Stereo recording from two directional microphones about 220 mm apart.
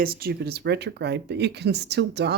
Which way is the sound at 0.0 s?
45° right (ahead or behind).